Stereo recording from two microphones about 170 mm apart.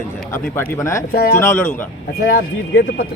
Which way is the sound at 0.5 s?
15° left (ahead or behind).